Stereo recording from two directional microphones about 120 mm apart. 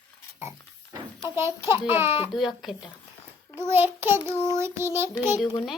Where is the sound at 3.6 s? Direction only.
20° right (ahead or behind).